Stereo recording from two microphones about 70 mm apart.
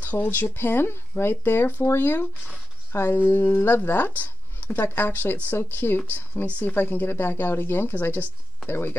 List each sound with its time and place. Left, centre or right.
0.0 s speech: left